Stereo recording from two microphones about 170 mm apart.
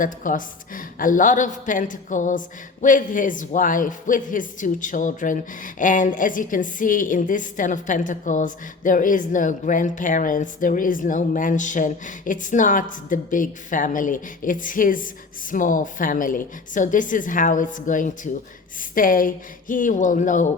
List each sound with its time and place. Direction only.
0.0 s speech: 50° left (ahead or behind)